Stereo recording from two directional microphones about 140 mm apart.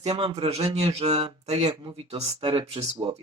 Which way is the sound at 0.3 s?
50° right (ahead or behind).